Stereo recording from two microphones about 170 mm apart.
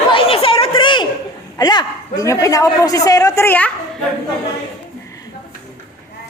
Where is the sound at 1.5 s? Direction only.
25° left (ahead or behind).